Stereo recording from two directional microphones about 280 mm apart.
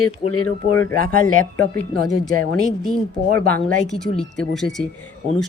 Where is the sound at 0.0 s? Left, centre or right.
Left.